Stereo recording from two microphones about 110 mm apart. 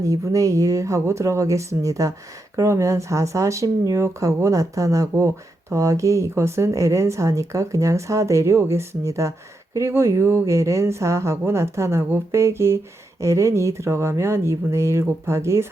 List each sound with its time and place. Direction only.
0.0 s speech: 30° right (ahead or behind)